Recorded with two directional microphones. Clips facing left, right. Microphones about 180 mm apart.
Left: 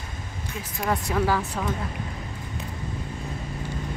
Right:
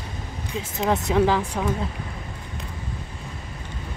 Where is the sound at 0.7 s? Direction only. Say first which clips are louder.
Right 4 dB; 20° right (ahead or behind).